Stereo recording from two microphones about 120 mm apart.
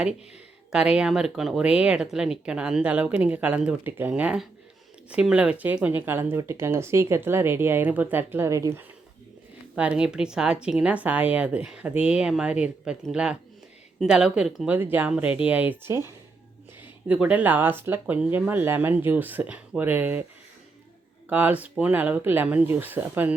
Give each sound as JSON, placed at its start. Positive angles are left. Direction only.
{"t": 0.7, "sound": "speech", "side_deg": -5}
{"t": 9.7, "sound": "speech", "side_deg": -10}
{"t": 14.7, "sound": "speech", "side_deg": -15}
{"t": 21.2, "sound": "speech", "side_deg": -15}